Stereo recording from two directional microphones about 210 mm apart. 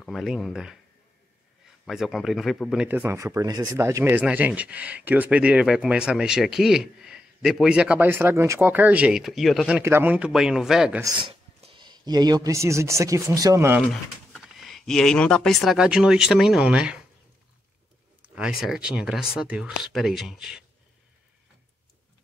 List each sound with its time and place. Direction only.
0.0 s speech: centre (ahead or behind)
1.9 s speech: centre (ahead or behind)
11.0 s speech: 20° right (ahead or behind)
13.8 s speech: centre (ahead or behind)
18.3 s speech: 5° right (ahead or behind)